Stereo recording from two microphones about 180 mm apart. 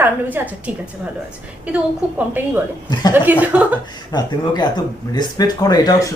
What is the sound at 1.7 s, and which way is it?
A woman's voice, 10° right (ahead or behind).